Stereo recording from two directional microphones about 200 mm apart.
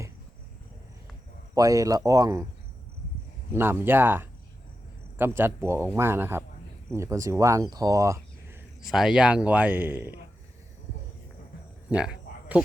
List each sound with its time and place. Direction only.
1.5 s speech: 15° right (ahead or behind)
3.5 s speech: 10° right (ahead or behind)
8.8 s speech: centre (ahead or behind)
11.9 s a sound: 5° right (ahead or behind)